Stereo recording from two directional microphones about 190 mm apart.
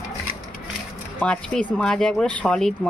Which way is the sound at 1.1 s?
5° left (ahead or behind).